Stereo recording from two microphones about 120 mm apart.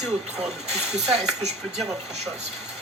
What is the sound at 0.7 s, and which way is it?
Speech, 65° right (ahead or behind).